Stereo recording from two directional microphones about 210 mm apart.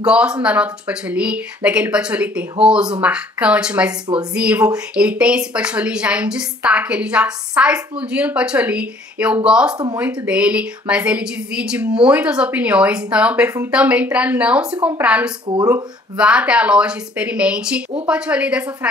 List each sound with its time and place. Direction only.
0.0 s speech: 5° right (ahead or behind)
15.4 s speech: 20° right (ahead or behind)
16.2 s speech: 5° right (ahead or behind)